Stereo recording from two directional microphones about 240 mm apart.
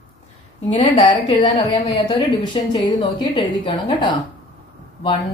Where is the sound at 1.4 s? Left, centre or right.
Centre.